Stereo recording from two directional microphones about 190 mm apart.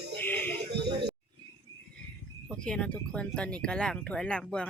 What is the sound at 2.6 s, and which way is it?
Speech, 5° left (ahead or behind).